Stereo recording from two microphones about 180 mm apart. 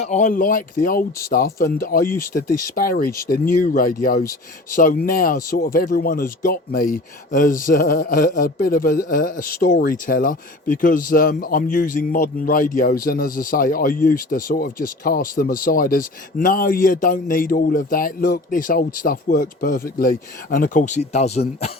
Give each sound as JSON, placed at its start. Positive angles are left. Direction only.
{"t": 0.0, "sound": "speech", "side_deg": 40}